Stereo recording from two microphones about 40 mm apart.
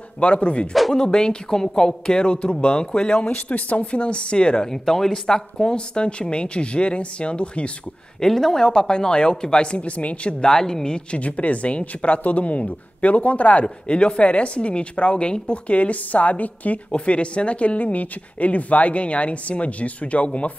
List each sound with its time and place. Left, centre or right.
0.2 s speech: left
4.6 s speech: centre; by 7.7 s left
8.2 s speech: centre
8.6 s speech: left
10.4 s speech: centre
11.1 s speech: left
16.9 s speech: left